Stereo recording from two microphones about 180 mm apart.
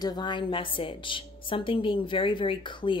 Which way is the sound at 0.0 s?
25° left (ahead or behind).